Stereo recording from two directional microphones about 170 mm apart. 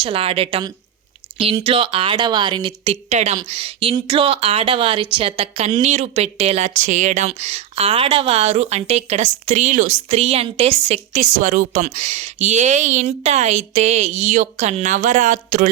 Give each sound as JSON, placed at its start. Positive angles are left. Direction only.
{"t": 0.0, "sound": "a woman's voice", "side_deg": -35}